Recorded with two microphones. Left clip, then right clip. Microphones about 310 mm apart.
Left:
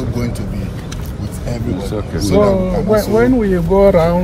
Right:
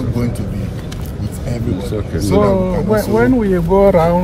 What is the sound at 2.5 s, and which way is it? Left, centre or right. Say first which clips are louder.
Speech: left 1 dB; centre.